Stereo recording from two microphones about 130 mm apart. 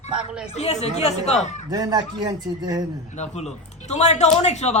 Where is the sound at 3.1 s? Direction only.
60° left (ahead or behind).